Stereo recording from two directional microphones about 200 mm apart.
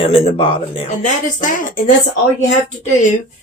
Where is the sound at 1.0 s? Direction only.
40° left (ahead or behind).